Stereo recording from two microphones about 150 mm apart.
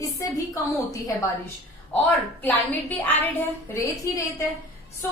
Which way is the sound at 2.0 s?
15° left (ahead or behind).